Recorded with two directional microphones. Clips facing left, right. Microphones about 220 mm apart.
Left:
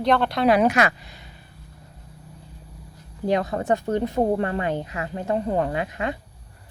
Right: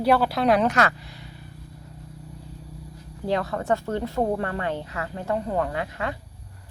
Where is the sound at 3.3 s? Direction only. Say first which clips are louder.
Left 2 dB; 20° left (ahead or behind).